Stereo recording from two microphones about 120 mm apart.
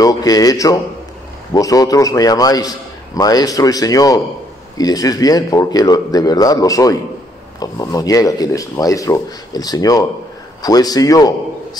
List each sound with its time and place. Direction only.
0.0 s a man's voice: 30° left (ahead or behind)